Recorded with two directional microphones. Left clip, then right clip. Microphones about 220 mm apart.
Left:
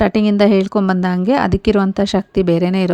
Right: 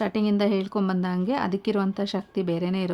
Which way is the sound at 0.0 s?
35° left (ahead or behind).